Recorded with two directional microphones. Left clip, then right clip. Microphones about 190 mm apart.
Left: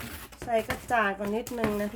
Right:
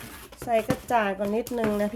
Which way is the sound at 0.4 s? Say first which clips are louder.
Right 3 dB; 30° right (ahead or behind).